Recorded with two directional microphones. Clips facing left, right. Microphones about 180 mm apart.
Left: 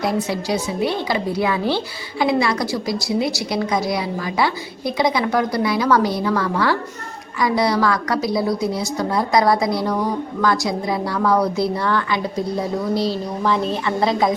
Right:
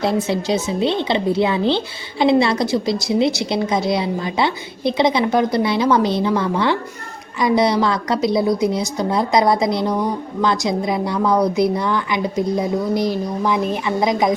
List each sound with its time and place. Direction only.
0.0 s a woman's voice: 25° right (ahead or behind)